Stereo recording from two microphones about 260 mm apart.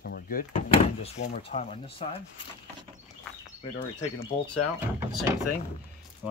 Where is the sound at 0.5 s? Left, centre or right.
Left.